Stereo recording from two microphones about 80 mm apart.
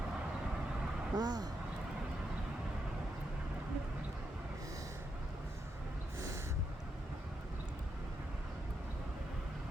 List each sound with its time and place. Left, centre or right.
1.1 s speech: right